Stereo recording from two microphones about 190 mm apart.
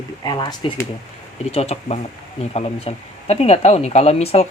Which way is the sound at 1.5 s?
35° left (ahead or behind).